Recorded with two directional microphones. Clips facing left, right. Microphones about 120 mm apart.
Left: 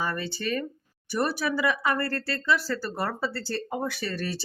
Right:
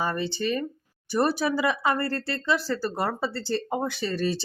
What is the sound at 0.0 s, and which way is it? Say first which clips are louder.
Speech: right 3 dB; 25° right (ahead or behind).